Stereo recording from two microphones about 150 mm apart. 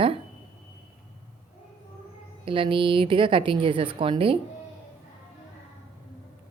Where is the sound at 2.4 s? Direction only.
35° right (ahead or behind).